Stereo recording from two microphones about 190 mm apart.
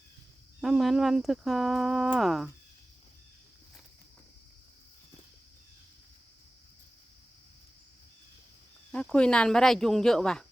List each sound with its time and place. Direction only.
0.6 s speech: centre (ahead or behind)
8.9 s speech: 5° left (ahead or behind)